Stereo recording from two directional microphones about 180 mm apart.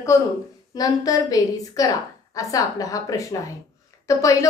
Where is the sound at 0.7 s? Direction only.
20° left (ahead or behind).